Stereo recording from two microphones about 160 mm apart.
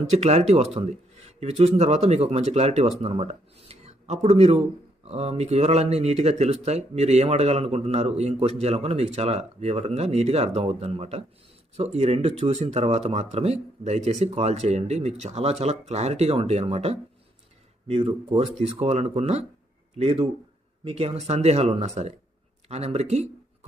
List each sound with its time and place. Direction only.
0.1 s speech: 45° right (ahead or behind)